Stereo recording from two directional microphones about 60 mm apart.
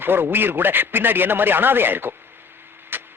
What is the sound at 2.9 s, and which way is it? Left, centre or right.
Vehicle, right.